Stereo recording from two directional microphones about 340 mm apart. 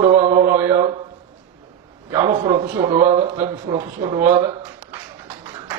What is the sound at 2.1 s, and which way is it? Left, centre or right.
A man's voice, centre.